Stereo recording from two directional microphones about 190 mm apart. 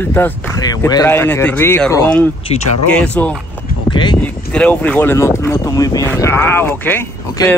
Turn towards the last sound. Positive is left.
turn(degrees=10)  # may be behind; listen again after turning